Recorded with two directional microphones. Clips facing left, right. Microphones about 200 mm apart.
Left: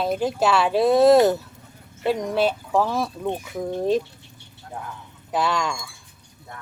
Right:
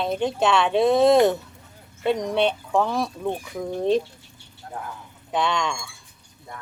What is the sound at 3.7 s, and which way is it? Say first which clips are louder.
Speech: right 1 dB; centre (ahead or behind).